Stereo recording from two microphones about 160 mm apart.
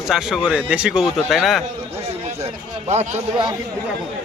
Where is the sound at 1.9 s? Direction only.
40° right (ahead or behind).